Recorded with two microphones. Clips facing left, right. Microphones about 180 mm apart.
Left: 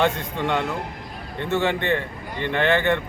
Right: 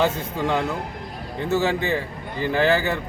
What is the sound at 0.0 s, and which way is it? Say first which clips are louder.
A man's voice: even; 5° right (ahead or behind).